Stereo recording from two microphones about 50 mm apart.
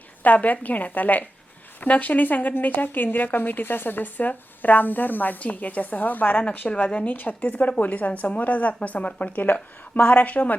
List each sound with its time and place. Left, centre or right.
0.2 s speech: left
6.3 s speech: left